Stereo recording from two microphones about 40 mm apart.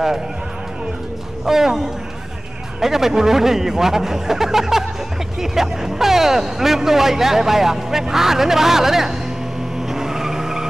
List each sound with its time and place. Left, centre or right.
1.4 s speech: centre
2.8 s speech: centre
9.8 s vehicle: centre